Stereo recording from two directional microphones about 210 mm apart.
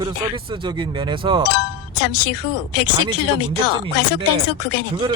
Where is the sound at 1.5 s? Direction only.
55° left (ahead or behind).